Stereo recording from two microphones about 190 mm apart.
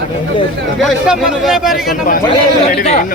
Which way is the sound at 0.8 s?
Centre (ahead or behind).